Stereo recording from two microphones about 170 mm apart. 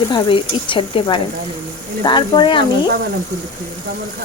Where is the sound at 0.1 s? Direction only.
30° left (ahead or behind).